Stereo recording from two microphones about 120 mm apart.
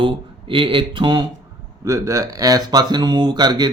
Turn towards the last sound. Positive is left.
turn(degrees=-35)  # may be behind; listen again after turning